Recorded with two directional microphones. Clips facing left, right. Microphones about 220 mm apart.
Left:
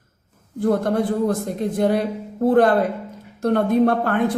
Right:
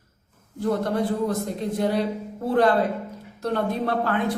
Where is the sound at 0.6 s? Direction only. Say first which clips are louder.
Left 4 dB; 50° left (ahead or behind).